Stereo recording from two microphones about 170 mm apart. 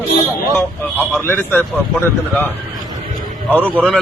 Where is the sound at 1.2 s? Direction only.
15° left (ahead or behind).